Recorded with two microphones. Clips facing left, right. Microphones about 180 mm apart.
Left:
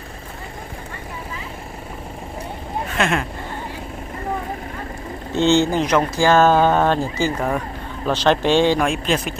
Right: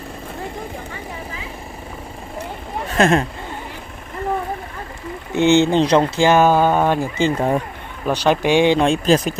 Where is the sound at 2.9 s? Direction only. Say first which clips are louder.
Right 6 dB; 40° right (ahead or behind).